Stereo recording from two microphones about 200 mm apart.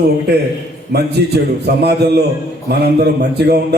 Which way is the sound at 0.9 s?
55° right (ahead or behind).